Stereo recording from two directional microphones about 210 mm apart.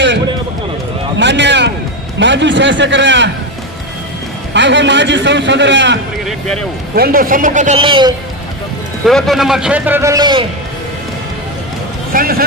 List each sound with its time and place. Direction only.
1.2 s a sound: 55° right (ahead or behind)
2.1 s a man's voice: 60° right (ahead or behind)
4.5 s a man's voice: 60° right (ahead or behind)
6.9 s a man's voice: 45° right (ahead or behind)
7.8 s a man's voice: 25° right (ahead or behind)
9.0 s a man's voice: centre (ahead or behind); by 10.4 s 20° right (ahead or behind)
12.1 s speech: 45° right (ahead or behind)